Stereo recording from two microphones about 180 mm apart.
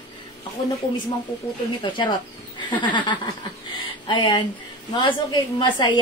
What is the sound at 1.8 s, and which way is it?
A woman's voice, 25° left (ahead or behind).